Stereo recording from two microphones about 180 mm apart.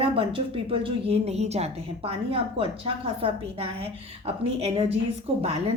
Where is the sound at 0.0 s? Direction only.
30° right (ahead or behind).